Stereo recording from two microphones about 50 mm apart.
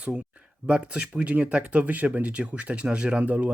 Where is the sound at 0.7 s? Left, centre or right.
Right.